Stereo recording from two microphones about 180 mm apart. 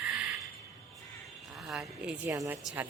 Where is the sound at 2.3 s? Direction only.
20° right (ahead or behind).